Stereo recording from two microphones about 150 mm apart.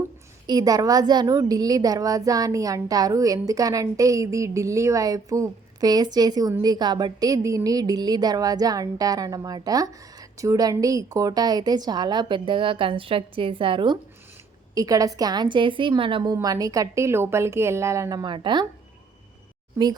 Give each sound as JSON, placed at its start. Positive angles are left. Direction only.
{"t": 0.4, "sound": "speech", "side_deg": -25}